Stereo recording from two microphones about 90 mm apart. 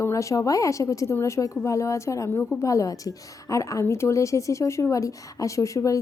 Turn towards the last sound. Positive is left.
turn(degrees=40)  # may be behind; listen again after turning